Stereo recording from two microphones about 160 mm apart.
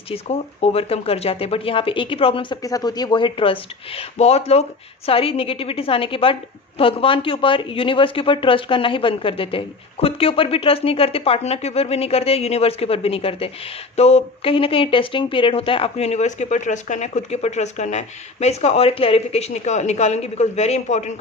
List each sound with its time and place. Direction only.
0.1 s a woman's voice: 40° left (ahead or behind)